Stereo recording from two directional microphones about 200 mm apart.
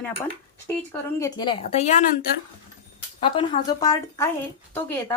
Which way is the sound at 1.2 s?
20° left (ahead or behind).